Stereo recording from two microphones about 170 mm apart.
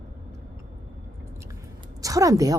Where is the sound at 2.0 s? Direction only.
20° right (ahead or behind).